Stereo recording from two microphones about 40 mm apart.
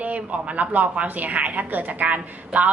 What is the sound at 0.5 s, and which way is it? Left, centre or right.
A woman's voice, right.